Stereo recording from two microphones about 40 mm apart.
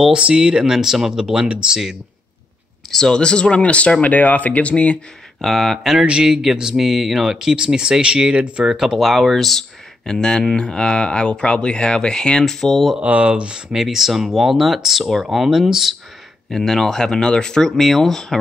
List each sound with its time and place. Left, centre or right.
0.1 s speech: right
1.4 s speech: right
2.9 s speech: centre; by 4.9 s left
5.4 s speech: centre
6.2 s speech: centre
8.6 s speech: centre
10.0 s speech: centre
12.5 s speech: centre
13.0 s speech: right
13.7 s speech: centre
16.4 s speech: centre
17.7 s speech: centre